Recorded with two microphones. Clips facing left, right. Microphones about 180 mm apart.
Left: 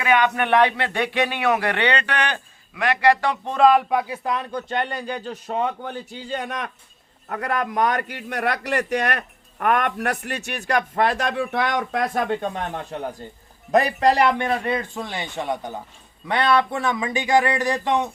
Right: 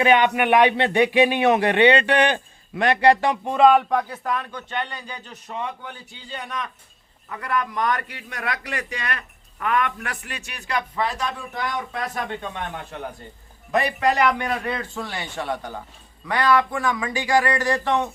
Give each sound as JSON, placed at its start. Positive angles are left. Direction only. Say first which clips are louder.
{"t": 0.0, "sound": "speech", "louder": "right 2 dB", "side_deg": -25}
{"t": 3.6, "sound": "speech", "louder": "even", "side_deg": 0}
{"t": 4.2, "sound": "a man's voice", "louder": "left 1 dB", "side_deg": 20}
{"t": 4.5, "sound": "a man's voice", "louder": "left 5 dB", "side_deg": 45}
{"t": 11.0, "sound": "a man's voice", "louder": "left 5 dB", "side_deg": 80}